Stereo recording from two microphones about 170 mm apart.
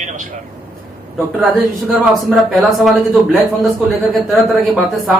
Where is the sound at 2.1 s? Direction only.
Centre (ahead or behind).